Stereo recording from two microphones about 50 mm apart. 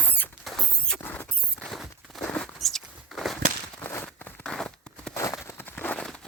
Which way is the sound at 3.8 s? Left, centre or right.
Left.